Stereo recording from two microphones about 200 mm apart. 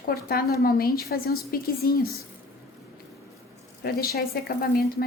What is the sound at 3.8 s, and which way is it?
Speech, 50° left (ahead or behind).